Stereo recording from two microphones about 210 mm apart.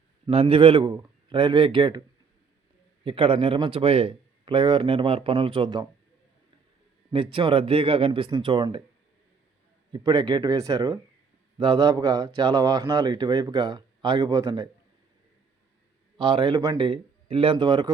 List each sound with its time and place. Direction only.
0.3 s speech: 30° right (ahead or behind)
7.1 s speech: 25° right (ahead or behind)
9.9 s speech: 20° right (ahead or behind)
16.1 s speech: 25° right (ahead or behind)